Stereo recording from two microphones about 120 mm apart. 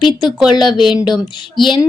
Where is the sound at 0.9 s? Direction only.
40° left (ahead or behind).